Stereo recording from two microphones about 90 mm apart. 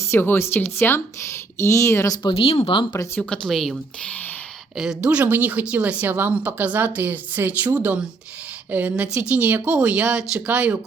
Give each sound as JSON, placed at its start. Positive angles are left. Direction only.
{"t": 0.0, "sound": "a woman's voice", "side_deg": 25}
{"t": 2.2, "sound": "speech", "side_deg": 90}
{"t": 3.2, "sound": "speech", "side_deg": 10}
{"t": 4.8, "sound": "speech", "side_deg": -5}
{"t": 5.0, "sound": "a woman's voice", "side_deg": -20}